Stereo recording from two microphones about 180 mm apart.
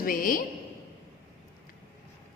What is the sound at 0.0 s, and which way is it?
Speech, 50° left (ahead or behind).